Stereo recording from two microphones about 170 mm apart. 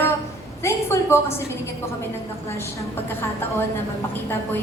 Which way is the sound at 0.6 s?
15° left (ahead or behind).